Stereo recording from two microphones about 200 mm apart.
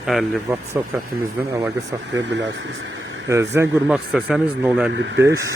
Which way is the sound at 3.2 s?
15° right (ahead or behind).